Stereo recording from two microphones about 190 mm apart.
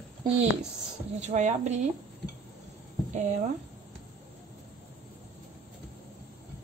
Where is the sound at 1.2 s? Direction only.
40° right (ahead or behind).